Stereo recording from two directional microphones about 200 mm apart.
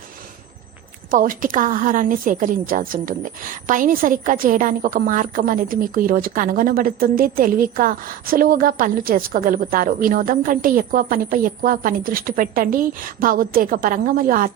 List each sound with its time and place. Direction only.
1.1 s a woman's voice: 45° right (ahead or behind)